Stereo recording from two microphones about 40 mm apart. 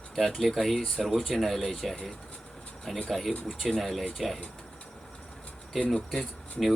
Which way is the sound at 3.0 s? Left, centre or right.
Centre.